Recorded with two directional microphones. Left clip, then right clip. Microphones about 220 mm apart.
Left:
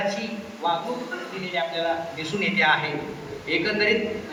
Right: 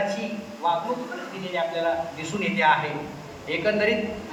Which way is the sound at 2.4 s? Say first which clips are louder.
Even; 10° right (ahead or behind).